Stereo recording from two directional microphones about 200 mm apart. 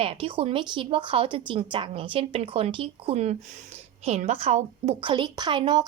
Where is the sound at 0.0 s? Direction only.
30° right (ahead or behind).